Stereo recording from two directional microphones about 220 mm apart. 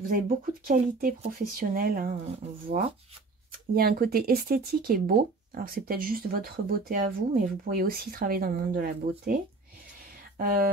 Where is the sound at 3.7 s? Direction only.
45° right (ahead or behind).